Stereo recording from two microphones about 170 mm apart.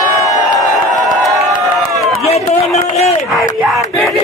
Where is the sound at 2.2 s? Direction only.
40° left (ahead or behind).